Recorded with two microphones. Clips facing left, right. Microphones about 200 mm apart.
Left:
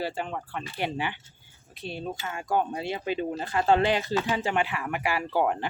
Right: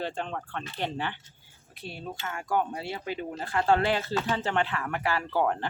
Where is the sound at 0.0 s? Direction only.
5° left (ahead or behind).